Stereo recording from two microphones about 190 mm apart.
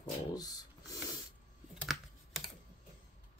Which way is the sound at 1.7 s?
Centre (ahead or behind).